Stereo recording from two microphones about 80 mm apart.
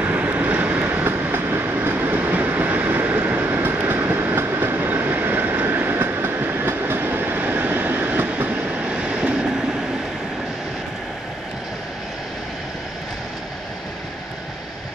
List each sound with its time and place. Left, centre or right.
0.0 s vehicle: right